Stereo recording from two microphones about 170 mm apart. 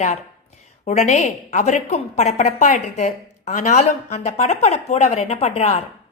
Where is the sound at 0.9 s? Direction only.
40° left (ahead or behind).